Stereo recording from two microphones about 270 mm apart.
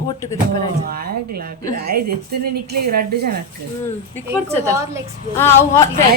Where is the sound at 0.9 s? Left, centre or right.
Right.